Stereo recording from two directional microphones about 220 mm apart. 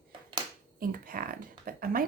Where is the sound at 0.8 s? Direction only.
40° right (ahead or behind).